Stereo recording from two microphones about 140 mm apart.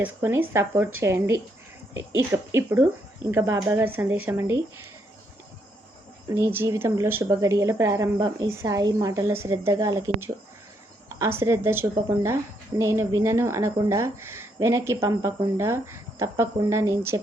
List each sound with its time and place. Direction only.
0.0 s speech: 15° right (ahead or behind)
6.3 s speech: 20° right (ahead or behind)